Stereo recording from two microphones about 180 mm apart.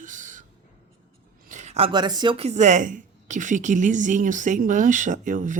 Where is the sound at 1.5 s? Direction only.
40° right (ahead or behind).